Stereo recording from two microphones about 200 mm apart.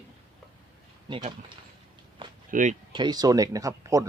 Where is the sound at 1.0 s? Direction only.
25° right (ahead or behind).